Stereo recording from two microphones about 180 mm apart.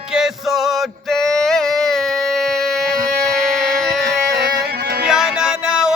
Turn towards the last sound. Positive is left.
turn(degrees=-5)  # may be behind; listen again after turning